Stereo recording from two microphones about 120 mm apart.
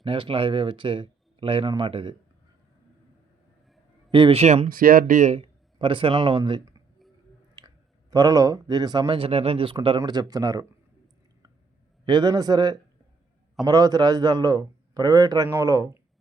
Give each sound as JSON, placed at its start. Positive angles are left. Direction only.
{"t": 0.0, "sound": "speech", "side_deg": -45}
{"t": 4.1, "sound": "speech", "side_deg": -45}
{"t": 4.4, "sound": "speech", "side_deg": -70}
{"t": 5.4, "sound": "speech", "side_deg": -45}
{"t": 8.1, "sound": "a man's voice", "side_deg": -30}
{"t": 10.0, "sound": "a man's voice", "side_deg": -35}
{"t": 12.0, "sound": "a man's voice", "side_deg": -40}